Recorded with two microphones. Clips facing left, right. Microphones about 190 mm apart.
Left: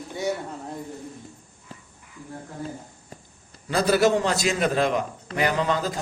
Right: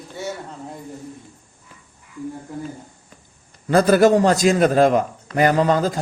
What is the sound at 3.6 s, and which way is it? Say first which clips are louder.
A man's voice: right 6 dB; 50° right (ahead or behind).